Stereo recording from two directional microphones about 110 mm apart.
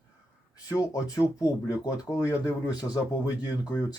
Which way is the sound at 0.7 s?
30° left (ahead or behind).